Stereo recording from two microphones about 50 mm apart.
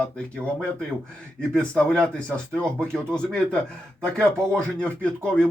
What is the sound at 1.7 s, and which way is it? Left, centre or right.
Speech, left.